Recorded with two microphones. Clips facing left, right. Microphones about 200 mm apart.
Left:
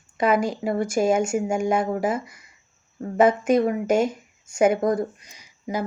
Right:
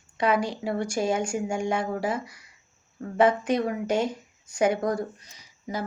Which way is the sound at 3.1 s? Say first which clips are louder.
Left 3 dB; 5° left (ahead or behind).